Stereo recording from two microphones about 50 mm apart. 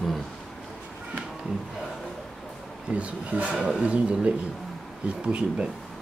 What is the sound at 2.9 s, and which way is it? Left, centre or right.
Speech, right.